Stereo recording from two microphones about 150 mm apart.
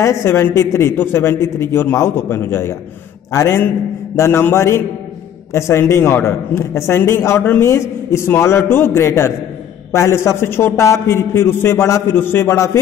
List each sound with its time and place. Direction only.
0.0 s a man's voice: 20° left (ahead or behind)